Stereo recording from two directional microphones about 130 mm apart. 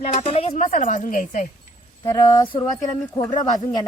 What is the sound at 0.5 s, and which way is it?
Speech, 75° left (ahead or behind).